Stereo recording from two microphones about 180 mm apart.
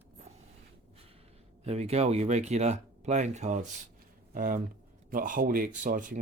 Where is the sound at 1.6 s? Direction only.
35° right (ahead or behind).